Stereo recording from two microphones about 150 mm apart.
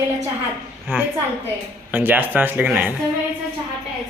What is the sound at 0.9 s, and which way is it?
Speech, 15° right (ahead or behind).